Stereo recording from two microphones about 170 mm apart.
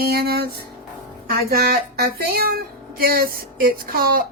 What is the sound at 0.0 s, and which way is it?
Speech, 65° right (ahead or behind).